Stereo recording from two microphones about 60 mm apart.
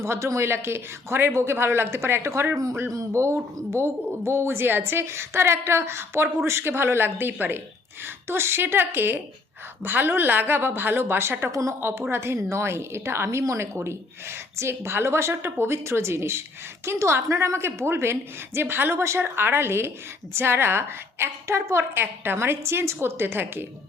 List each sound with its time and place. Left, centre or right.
0.0 s a woman's voice: right